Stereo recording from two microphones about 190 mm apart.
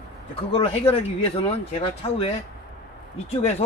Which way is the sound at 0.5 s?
30° left (ahead or behind).